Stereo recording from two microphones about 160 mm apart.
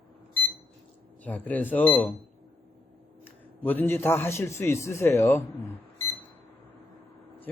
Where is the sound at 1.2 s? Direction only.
10° left (ahead or behind).